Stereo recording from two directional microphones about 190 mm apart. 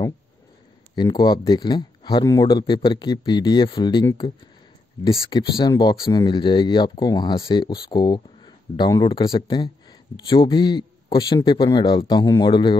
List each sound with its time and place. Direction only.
0.9 s speech: 25° left (ahead or behind)
5.3 s speech: 25° left (ahead or behind)